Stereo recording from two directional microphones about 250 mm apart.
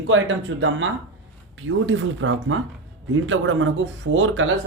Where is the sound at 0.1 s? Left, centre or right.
Right.